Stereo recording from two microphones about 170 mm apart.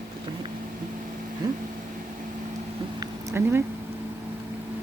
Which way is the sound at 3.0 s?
15° right (ahead or behind).